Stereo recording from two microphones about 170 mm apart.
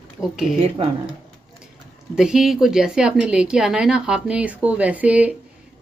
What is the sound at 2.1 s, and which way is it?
A woman's voice, 5° right (ahead or behind).